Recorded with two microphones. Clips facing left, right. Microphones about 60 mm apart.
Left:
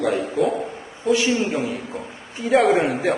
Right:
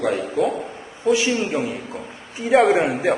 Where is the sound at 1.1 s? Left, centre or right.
Centre.